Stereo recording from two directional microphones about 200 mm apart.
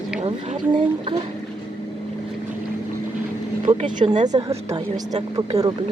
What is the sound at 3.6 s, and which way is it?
Speech, 30° right (ahead or behind).